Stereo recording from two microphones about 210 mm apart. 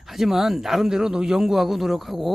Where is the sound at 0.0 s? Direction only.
Centre (ahead or behind).